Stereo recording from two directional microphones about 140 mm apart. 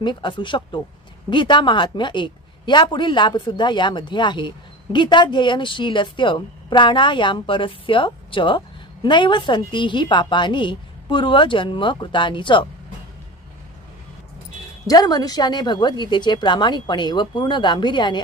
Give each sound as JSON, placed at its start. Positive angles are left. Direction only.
{"t": 0.0, "sound": "a woman's voice", "side_deg": 35}
{"t": 14.9, "sound": "a woman's voice", "side_deg": 30}